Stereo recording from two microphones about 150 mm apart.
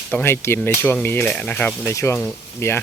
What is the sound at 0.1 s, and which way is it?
Speech, 15° left (ahead or behind).